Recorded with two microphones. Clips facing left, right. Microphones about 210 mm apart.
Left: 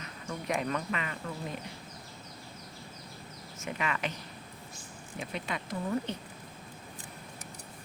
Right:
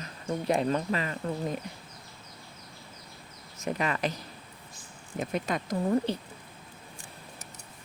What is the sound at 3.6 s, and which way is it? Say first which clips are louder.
Speech: right 5 dB; 40° right (ahead or behind).